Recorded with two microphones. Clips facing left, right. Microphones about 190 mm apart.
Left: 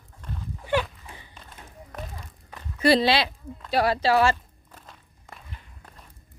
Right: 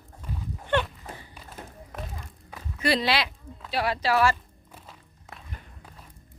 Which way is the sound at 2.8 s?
30° left (ahead or behind).